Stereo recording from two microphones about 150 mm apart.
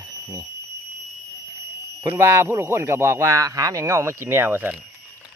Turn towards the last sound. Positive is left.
turn(degrees=-10)  # may be behind; listen again after turning